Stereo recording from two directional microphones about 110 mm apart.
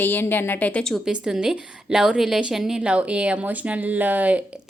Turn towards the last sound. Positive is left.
turn(degrees=-15)  # may be behind; listen again after turning